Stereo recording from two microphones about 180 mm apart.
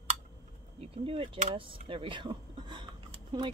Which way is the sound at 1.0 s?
30° right (ahead or behind).